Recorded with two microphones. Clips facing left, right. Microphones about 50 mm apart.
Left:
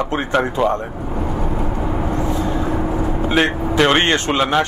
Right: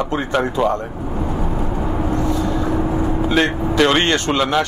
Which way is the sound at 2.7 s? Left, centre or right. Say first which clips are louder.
Right 1 dB; centre.